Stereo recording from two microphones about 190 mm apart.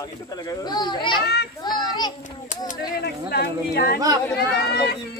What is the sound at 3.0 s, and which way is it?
Speech, 60° left (ahead or behind).